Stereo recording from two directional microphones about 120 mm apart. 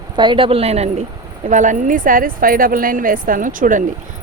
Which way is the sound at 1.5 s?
90° right.